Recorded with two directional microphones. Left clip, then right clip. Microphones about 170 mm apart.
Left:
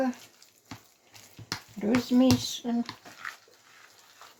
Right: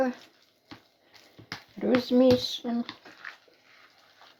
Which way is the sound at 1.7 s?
35° right (ahead or behind).